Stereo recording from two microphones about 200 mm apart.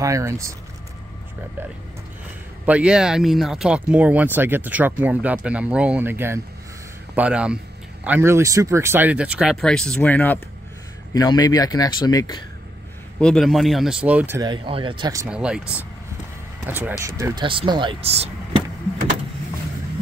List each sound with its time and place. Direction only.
0.0 s speech: 15° right (ahead or behind)
2.6 s speech: 5° right (ahead or behind)
11.1 s speech: 20° left (ahead or behind)
13.2 s speech: centre (ahead or behind)
14.5 s speech: 25° right (ahead or behind)
15.2 s speech: 5° right (ahead or behind); by 18.3 s 30° right (ahead or behind)